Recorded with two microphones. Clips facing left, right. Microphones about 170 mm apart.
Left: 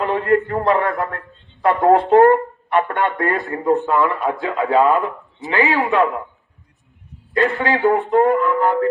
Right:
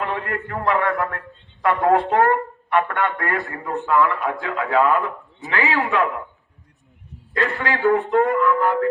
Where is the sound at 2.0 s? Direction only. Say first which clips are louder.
Left 6 dB; 20° left (ahead or behind).